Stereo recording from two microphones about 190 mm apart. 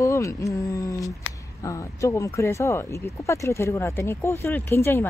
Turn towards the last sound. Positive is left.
turn(degrees=15)  # may be behind; listen again after turning